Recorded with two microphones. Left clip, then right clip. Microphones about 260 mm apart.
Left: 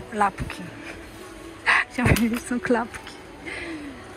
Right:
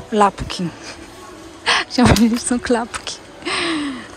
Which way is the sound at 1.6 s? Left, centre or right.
Centre.